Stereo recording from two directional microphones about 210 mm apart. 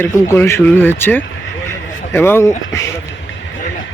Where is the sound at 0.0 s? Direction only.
10° left (ahead or behind).